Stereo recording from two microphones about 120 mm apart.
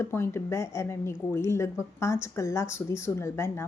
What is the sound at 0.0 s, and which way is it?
A woman's voice, 20° left (ahead or behind).